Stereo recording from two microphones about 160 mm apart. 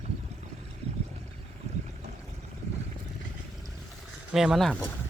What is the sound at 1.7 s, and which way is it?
Boat, 45° right (ahead or behind).